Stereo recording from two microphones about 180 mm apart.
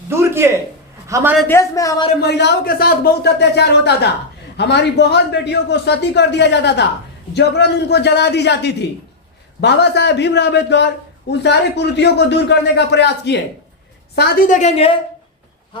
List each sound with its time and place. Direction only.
0.1 s a sound: 15° right (ahead or behind)
1.0 s speech: 15° right (ahead or behind)
1.5 s speech: 15° left (ahead or behind)
2.2 s a man's voice: 70° left (ahead or behind)
14.2 s a woman's voice: 50° left (ahead or behind)